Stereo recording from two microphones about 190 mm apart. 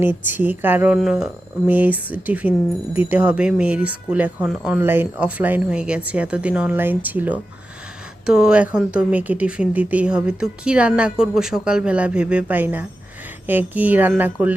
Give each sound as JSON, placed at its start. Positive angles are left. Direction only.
{"t": 0.3, "sound": "speech", "side_deg": -10}